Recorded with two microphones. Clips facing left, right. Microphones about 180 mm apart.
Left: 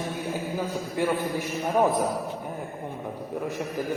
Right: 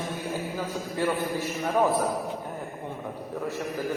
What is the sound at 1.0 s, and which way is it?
Speech, 15° left (ahead or behind).